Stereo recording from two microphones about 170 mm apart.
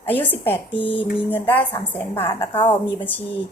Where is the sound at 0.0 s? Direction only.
10° left (ahead or behind).